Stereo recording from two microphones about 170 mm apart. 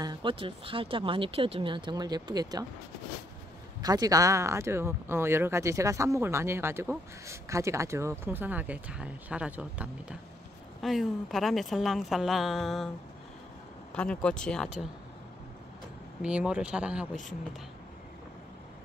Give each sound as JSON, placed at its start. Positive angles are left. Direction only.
{"t": 0.0, "sound": "speech", "side_deg": -25}
{"t": 3.8, "sound": "a woman's voice", "side_deg": -20}
{"t": 13.9, "sound": "a woman's voice", "side_deg": 5}
{"t": 16.2, "sound": "speech", "side_deg": -5}